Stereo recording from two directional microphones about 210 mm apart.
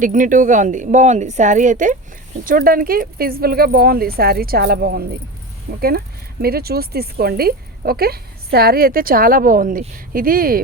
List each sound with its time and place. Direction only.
0.0 s a woman's voice: 40° right (ahead or behind)